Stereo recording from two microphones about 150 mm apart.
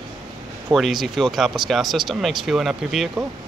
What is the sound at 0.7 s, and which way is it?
Speech, centre (ahead or behind).